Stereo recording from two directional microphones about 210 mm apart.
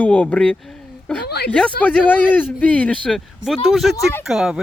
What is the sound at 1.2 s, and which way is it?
Speech, 50° left (ahead or behind).